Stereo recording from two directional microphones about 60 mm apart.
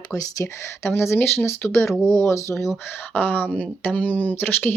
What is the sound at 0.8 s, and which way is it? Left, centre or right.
Speech, left.